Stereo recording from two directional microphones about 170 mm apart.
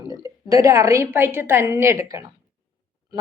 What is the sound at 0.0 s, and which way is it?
A woman's voice, 20° right (ahead or behind).